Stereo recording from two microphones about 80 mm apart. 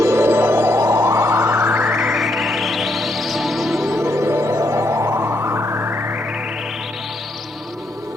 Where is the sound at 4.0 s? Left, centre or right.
Right.